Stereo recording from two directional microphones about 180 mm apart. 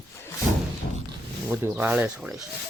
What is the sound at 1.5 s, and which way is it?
Speech, 10° right (ahead or behind).